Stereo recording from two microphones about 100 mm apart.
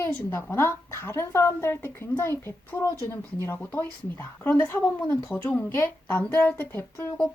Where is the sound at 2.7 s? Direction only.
35° left (ahead or behind).